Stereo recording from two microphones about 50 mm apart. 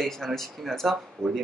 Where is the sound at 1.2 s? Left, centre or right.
Right.